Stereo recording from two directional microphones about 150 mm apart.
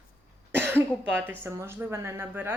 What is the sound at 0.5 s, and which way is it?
Cough, 15° right (ahead or behind).